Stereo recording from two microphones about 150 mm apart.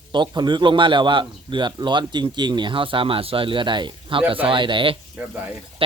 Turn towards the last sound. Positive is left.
turn(degrees=-35)  # may be behind; listen again after turning